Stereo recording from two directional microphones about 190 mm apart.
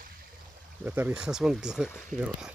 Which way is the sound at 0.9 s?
5° right (ahead or behind).